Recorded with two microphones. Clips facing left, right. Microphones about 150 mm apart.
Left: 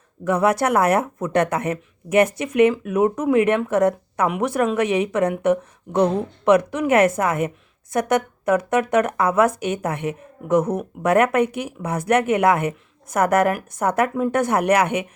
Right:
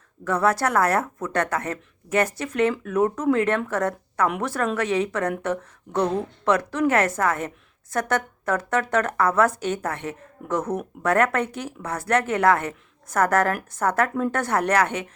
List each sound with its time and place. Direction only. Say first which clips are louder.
0.3 s a woman's voice: left 3 dB; 15° left (ahead or behind)